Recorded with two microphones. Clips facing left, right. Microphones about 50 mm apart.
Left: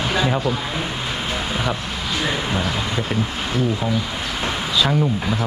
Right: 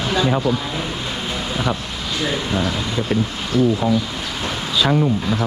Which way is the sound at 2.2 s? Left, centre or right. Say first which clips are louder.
Right 2 dB; centre.